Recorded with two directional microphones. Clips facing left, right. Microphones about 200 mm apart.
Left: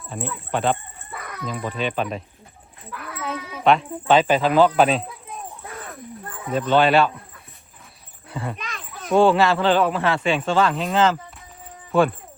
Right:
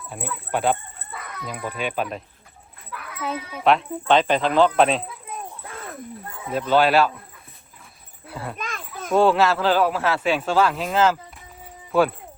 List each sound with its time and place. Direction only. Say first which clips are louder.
0.5 s speech: even; 10° right (ahead or behind)
3.2 s a sound: right 2 dB; centre (ahead or behind)
4.0 s speech: left 2 dB; 5° left (ahead or behind)
6.5 s speech: left 1 dB; 5° right (ahead or behind)
8.3 s speech: left 3 dB; 5° right (ahead or behind)
8.5 s children playing: right 3 dB; 50° right (ahead or behind)
9.1 s speech: left 1 dB; centre (ahead or behind)